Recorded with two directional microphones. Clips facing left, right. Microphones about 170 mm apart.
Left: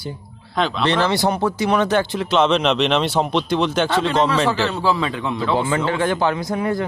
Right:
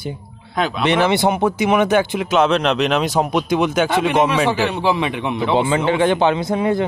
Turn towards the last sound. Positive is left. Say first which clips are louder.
# right 4 dB
turn(degrees=-25)  # may be behind; listen again after turning